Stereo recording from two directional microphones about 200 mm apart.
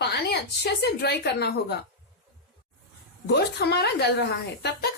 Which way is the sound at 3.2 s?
55° left (ahead or behind).